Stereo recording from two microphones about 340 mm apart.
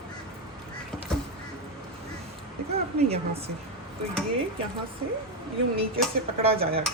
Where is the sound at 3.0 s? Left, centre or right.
Centre.